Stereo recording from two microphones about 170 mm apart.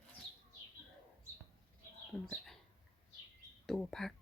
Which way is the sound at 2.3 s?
Centre (ahead or behind).